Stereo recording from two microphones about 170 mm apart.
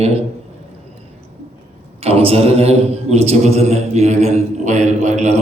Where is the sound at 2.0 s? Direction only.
35° right (ahead or behind).